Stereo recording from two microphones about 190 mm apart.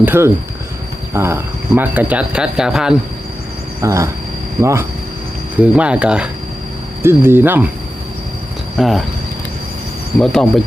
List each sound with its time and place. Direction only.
0.0 s speech: 10° right (ahead or behind)
3.8 s speech: 15° right (ahead or behind)
8.8 s speech: centre (ahead or behind)
10.2 s speech: 5° left (ahead or behind)